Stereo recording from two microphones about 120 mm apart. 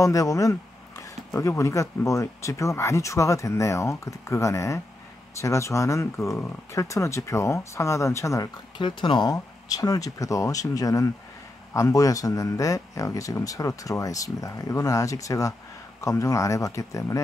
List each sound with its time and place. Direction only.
0.0 s speech: 30° left (ahead or behind)
8.7 s speech: 40° left (ahead or behind)